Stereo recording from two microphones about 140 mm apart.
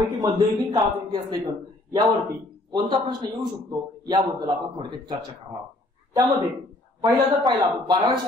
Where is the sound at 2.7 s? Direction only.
35° right (ahead or behind).